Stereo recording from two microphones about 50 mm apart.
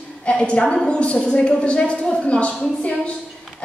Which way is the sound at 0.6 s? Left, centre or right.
Centre.